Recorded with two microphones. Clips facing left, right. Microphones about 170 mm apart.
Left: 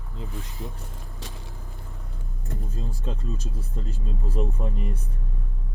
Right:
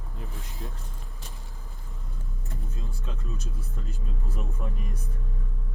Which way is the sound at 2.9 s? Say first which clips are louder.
Left 7 dB; 35° left (ahead or behind).